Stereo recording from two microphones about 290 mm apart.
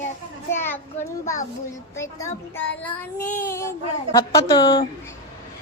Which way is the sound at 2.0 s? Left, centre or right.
Centre.